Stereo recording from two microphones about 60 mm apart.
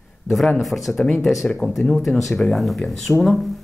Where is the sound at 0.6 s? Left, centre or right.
Centre.